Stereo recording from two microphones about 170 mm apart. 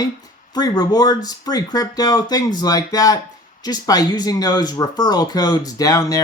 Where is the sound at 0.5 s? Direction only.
25° left (ahead or behind).